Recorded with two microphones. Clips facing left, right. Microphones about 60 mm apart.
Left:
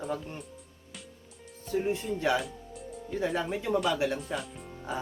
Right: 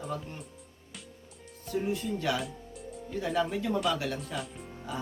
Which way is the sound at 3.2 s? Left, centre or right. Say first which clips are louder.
Right 1 dB; left.